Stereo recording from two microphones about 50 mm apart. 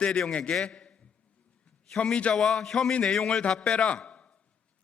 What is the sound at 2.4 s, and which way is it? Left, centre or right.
A man's voice, centre.